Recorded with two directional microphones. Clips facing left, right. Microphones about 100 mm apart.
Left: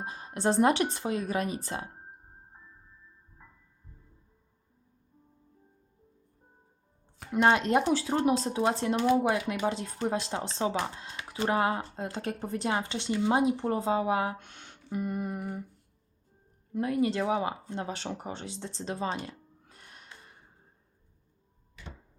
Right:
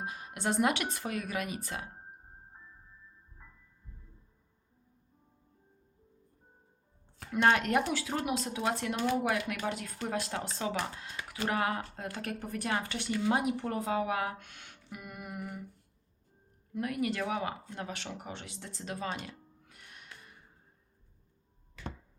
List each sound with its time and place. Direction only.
0.0 s speech: 30° left (ahead or behind)
7.4 s speech: 25° left (ahead or behind)
16.7 s speech: 30° left (ahead or behind)
19.2 s music: 35° left (ahead or behind)